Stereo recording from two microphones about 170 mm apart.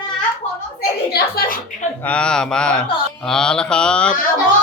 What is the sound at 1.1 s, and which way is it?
Speech, 65° left (ahead or behind).